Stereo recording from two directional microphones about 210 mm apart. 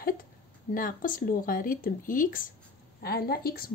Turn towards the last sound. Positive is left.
turn(degrees=45)  # may be behind; listen again after turning